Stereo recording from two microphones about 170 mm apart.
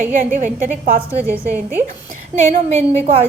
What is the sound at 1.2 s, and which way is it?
Speech, 10° right (ahead or behind).